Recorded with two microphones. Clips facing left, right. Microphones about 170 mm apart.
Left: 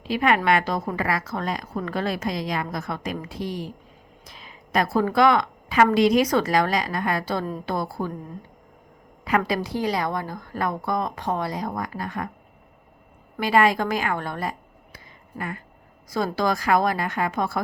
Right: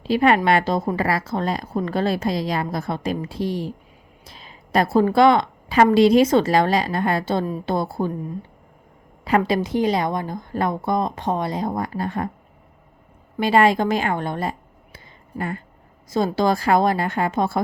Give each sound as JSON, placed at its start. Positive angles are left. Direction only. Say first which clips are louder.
{"t": 0.0, "sound": "a woman's voice", "louder": "right 4 dB", "side_deg": -30}
{"t": 9.2, "sound": "a woman's voice", "louder": "right 4 dB", "side_deg": -30}
{"t": 13.4, "sound": "a woman's voice", "louder": "right 3 dB", "side_deg": -25}
{"t": 14.9, "sound": "a sound", "louder": "right 5 dB", "side_deg": -30}
{"t": 16.0, "sound": "a woman's voice", "louder": "right 4 dB", "side_deg": -25}